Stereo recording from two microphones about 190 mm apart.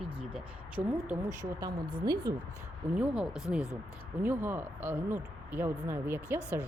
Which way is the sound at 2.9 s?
5° right (ahead or behind).